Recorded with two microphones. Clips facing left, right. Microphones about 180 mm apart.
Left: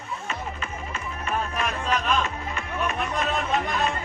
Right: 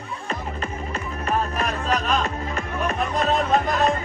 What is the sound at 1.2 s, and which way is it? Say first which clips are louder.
Music: right 3 dB; 40° right (ahead or behind).